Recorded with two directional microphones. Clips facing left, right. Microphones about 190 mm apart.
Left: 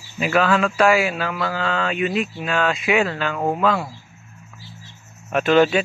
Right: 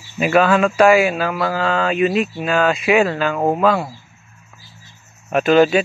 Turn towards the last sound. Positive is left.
turn(degrees=-40)  # may be behind; listen again after turning